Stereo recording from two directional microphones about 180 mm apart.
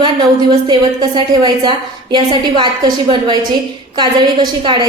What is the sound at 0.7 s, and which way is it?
A woman's voice, 25° right (ahead or behind).